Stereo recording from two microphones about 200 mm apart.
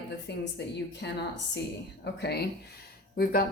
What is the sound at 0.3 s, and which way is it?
A woman's voice, 60° left (ahead or behind).